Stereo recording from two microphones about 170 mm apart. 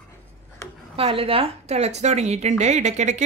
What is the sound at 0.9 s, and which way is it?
A woman's voice, 35° right (ahead or behind).